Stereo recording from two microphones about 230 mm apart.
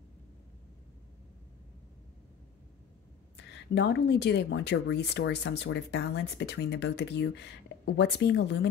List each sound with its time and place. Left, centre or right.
3.3 s speech: left